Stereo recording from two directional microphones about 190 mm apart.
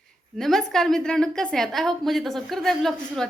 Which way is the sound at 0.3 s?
Centre (ahead or behind).